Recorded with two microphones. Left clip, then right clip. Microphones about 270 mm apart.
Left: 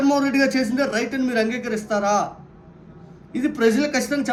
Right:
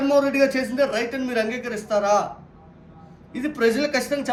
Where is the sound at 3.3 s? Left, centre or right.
Centre.